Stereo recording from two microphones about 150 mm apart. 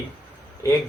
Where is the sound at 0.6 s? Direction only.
20° left (ahead or behind).